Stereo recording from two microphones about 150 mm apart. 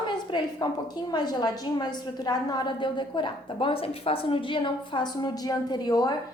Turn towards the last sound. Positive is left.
turn(degrees=25)  # may be behind; listen again after turning